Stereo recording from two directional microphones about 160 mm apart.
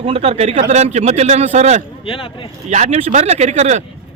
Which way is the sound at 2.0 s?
35° left (ahead or behind).